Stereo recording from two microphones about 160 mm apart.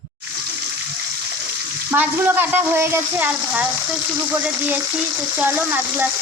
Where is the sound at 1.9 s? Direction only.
10° right (ahead or behind).